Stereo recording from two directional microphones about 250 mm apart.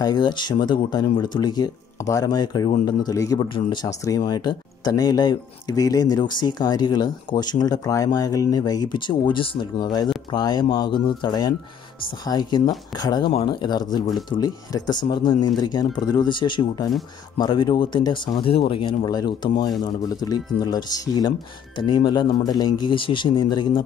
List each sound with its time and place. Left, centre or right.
0.0 s a man's voice: centre